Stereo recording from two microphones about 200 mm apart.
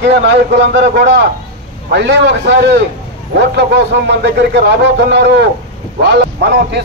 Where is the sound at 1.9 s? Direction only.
60° right (ahead or behind).